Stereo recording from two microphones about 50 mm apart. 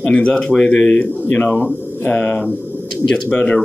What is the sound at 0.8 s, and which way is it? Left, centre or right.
Speech, left.